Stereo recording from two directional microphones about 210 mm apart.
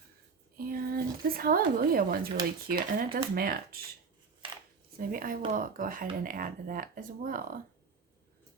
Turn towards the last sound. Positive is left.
turn(degrees=-40)  # may be behind; listen again after turning